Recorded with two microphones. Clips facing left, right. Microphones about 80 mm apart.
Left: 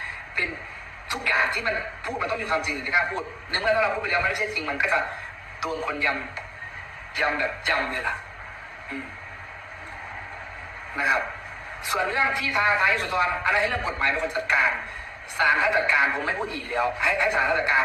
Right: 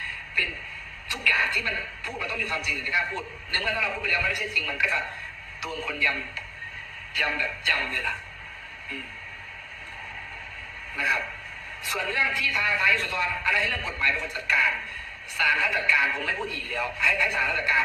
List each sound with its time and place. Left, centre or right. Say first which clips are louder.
0.0 s a sound: left 1 dB; left
1.1 s a man's voice: left 2 dB; left
10.9 s a man's voice: left 4 dB; left